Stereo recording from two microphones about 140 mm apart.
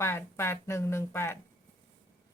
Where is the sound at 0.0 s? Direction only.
15° left (ahead or behind).